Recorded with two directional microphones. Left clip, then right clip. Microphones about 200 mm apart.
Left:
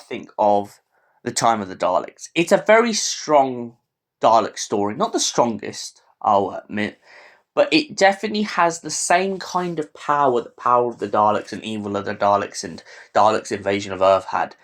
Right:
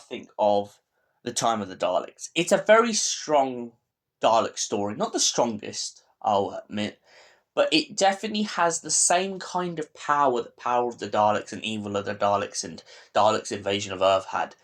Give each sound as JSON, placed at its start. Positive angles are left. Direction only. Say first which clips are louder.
{"t": 0.1, "sound": "speech", "louder": "left 5 dB", "side_deg": 25}